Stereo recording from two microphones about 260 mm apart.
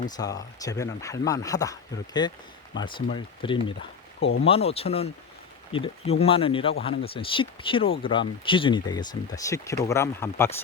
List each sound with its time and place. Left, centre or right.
0.2 s speech: centre